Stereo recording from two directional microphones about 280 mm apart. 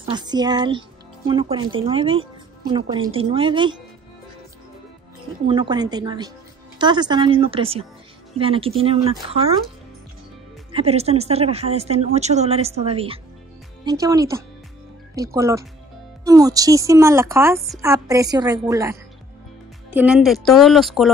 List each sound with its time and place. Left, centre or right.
0.0 s a woman's voice: centre
5.5 s a woman's voice: centre
10.7 s a woman's voice: right
15.3 s a woman's voice: centre